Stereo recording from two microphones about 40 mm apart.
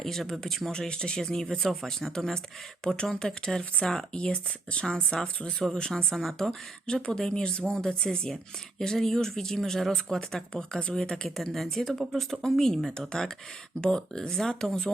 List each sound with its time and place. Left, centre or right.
0.0 s speech: centre
0.7 s speech: left
6.5 s speech: centre
11.3 s speech: centre